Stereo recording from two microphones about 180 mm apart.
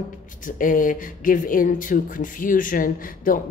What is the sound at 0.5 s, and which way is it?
Speech, 50° left (ahead or behind).